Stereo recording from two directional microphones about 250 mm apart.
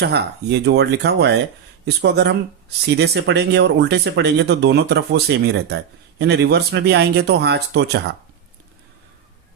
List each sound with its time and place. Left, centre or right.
0.0 s speech: right